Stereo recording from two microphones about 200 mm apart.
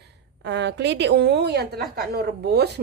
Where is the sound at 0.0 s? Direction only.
60° right (ahead or behind).